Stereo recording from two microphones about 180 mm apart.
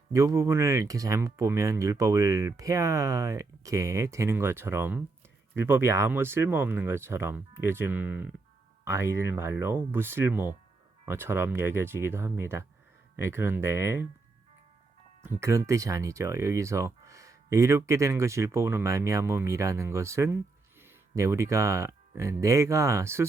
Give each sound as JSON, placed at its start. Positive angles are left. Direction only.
{"t": 0.1, "sound": "speech", "side_deg": -15}
{"t": 15.2, "sound": "speech", "side_deg": -15}